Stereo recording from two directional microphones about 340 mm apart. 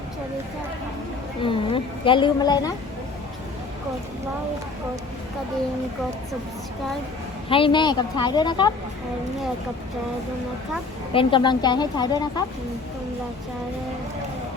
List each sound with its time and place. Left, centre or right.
1.4 s speech: centre
7.5 s speech: centre
11.1 s speech: centre